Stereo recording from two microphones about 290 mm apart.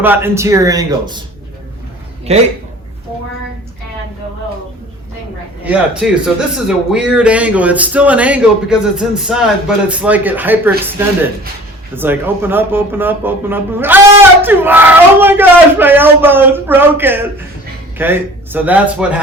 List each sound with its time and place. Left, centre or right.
0.0 s speech: centre
2.3 s a man's voice: right
5.6 s a man's voice: centre
11.9 s a man's voice: centre